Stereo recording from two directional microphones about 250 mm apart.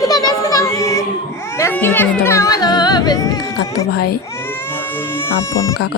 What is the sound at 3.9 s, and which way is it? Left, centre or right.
Speech, left.